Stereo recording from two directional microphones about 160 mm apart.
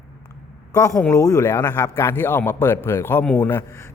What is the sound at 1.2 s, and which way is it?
Speech, 20° left (ahead or behind).